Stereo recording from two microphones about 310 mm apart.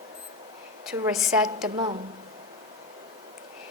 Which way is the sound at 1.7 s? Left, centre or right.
Centre.